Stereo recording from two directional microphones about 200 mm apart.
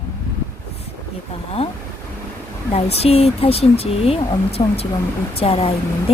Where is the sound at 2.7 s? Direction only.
30° left (ahead or behind).